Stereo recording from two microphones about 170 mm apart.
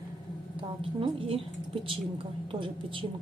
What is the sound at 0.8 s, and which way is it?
A woman's voice, 30° right (ahead or behind).